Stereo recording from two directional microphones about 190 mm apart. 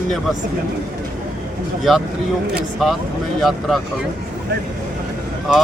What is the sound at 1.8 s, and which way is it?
Speech, centre (ahead or behind).